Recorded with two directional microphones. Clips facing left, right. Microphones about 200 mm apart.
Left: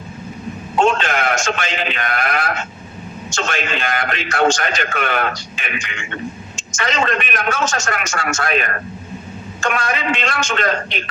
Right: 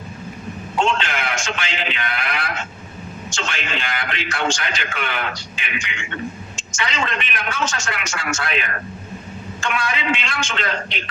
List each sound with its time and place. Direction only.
0.8 s a man's voice: 45° left (ahead or behind)